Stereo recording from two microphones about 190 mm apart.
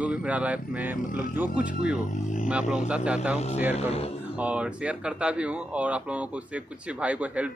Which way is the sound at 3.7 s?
30° left (ahead or behind).